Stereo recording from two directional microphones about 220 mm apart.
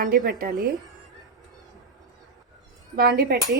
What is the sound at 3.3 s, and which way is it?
Speech, 45° right (ahead or behind).